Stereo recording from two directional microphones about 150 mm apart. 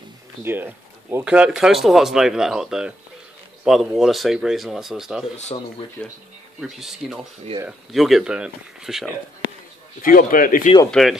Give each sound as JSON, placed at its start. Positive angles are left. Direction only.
{"t": 0.4, "sound": "speech", "side_deg": -15}
{"t": 6.6, "sound": "speech", "side_deg": 0}
{"t": 10.0, "sound": "speech", "side_deg": 65}
{"t": 10.9, "sound": "speech", "side_deg": 0}